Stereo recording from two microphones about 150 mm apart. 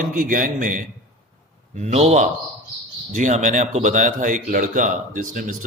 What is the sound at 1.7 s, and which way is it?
A man's voice, 50° right (ahead or behind).